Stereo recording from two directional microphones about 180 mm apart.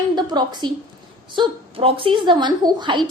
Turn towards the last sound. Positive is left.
turn(degrees=-25)  # may be behind; listen again after turning